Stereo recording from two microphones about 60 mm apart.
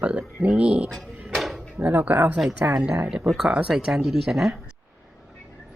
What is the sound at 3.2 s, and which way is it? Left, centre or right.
Speech, centre.